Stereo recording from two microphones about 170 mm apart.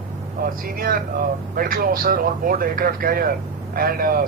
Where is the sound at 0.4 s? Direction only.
60° right (ahead or behind).